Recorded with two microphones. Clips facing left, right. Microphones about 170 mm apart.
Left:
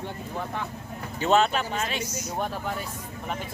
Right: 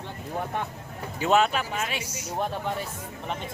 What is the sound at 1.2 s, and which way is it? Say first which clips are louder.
Speech: even; 5° right (ahead or behind).